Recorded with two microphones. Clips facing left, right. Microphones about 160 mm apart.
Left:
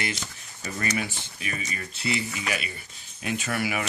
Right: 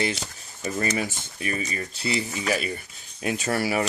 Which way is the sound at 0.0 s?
30° right (ahead or behind).